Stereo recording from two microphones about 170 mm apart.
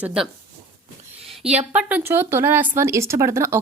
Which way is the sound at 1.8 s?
10° right (ahead or behind).